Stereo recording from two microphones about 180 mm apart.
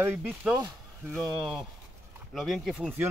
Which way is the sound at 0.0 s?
10° right (ahead or behind).